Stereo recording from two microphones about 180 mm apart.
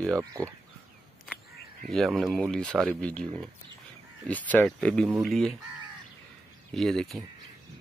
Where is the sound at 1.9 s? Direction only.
Centre (ahead or behind).